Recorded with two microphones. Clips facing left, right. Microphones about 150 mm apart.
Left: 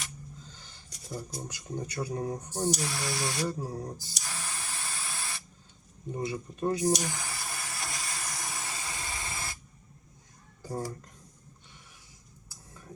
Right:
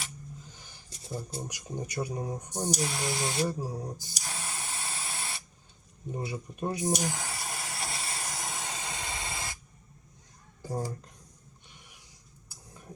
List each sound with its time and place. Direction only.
0.5 s a sound: 15° right (ahead or behind)
0.9 s a sound: 25° right (ahead or behind)
1.5 s speech: 15° right (ahead or behind)
3.6 s spray: 10° right (ahead or behind)
6.1 s speech: 15° right (ahead or behind)
7.0 s hiss: 25° right (ahead or behind)
12.5 s vehicle: 15° right (ahead or behind)